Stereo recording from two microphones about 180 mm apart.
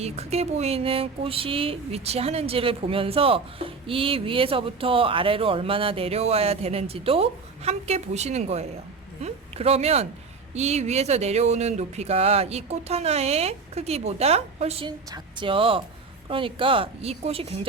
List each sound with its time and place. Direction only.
0.0 s speech: 35° right (ahead or behind)